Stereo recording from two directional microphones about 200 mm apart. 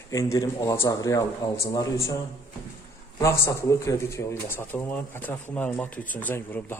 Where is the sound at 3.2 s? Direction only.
15° left (ahead or behind).